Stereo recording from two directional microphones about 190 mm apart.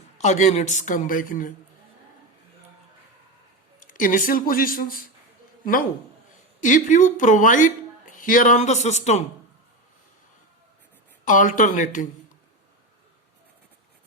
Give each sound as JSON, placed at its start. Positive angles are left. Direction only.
{"t": 0.2, "sound": "a woman's voice", "side_deg": 40}
{"t": 3.8, "sound": "speech", "side_deg": 45}
{"t": 6.6, "sound": "a woman's voice", "side_deg": 45}
{"t": 11.3, "sound": "a woman's voice", "side_deg": 45}